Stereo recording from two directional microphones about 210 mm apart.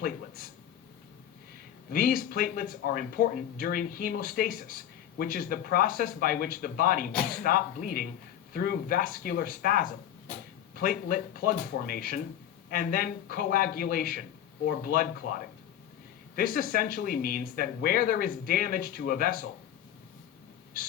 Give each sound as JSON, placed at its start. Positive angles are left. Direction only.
{"t": 1.9, "sound": "speech", "side_deg": 45}